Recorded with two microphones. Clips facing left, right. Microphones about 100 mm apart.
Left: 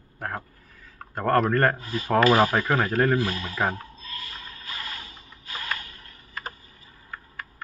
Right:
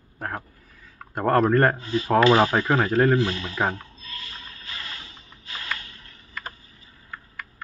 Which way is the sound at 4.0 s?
35° left (ahead or behind).